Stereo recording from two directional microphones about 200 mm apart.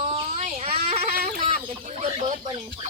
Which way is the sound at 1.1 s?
50° right (ahead or behind).